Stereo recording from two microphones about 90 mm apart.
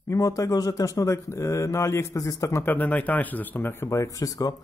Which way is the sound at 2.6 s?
20° left (ahead or behind).